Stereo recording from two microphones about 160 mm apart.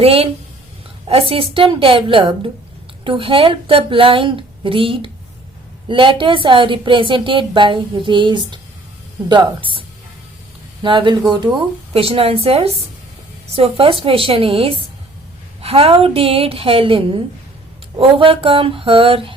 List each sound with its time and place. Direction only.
0.0 s a woman's voice: 35° right (ahead or behind)
10.8 s a woman's voice: 30° right (ahead or behind)